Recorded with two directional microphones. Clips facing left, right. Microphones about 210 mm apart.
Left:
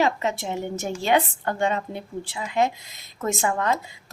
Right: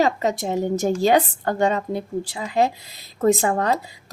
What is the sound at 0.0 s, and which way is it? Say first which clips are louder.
A woman's voice: right 3 dB; 40° right (ahead or behind).